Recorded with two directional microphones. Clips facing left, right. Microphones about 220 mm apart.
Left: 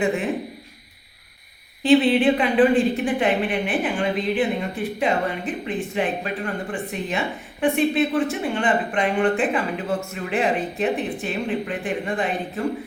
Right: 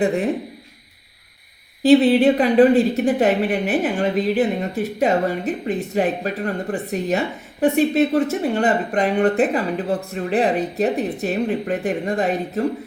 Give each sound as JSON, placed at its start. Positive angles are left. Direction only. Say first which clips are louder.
{"t": 0.0, "sound": "a woman's voice", "louder": "right 3 dB", "side_deg": -35}
{"t": 1.8, "sound": "a woman's voice", "louder": "right 3 dB", "side_deg": -40}